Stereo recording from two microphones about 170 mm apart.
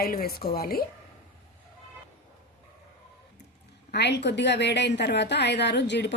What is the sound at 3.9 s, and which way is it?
A woman's voice, 80° left.